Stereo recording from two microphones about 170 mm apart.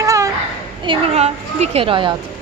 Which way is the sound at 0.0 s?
20° right (ahead or behind).